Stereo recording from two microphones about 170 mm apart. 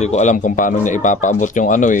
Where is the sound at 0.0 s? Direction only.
45° left (ahead or behind).